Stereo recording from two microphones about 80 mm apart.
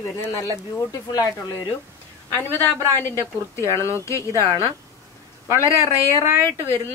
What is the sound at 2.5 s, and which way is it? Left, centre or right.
A woman's voice, left.